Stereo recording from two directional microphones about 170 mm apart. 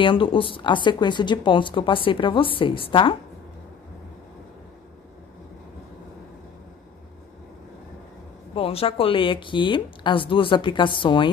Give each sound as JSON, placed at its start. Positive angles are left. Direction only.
{"t": 0.0, "sound": "speech", "side_deg": 30}
{"t": 8.5, "sound": "speech", "side_deg": 35}